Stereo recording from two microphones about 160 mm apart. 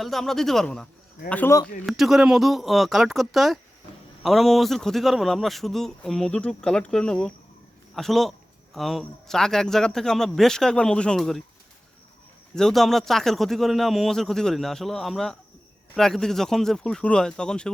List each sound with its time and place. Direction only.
0.0 s a man's voice: centre (ahead or behind)
1.9 s a man's voice: centre (ahead or behind)
12.5 s a man's voice: 5° left (ahead or behind)